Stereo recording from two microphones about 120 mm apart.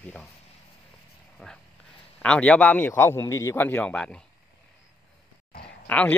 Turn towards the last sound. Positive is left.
turn(degrees=15)  # may be behind; listen again after turning